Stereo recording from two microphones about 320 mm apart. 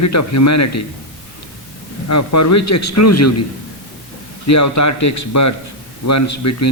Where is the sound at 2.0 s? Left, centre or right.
Left.